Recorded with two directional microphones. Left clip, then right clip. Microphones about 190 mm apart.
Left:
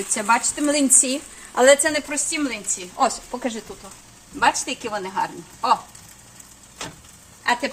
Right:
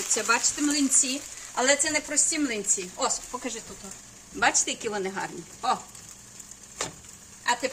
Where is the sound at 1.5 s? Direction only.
45° left (ahead or behind).